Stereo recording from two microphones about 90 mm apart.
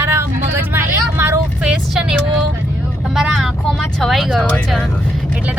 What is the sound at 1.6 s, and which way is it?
Vehicle, 10° right (ahead or behind).